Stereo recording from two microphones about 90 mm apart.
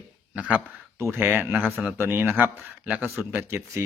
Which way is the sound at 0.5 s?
25° right (ahead or behind).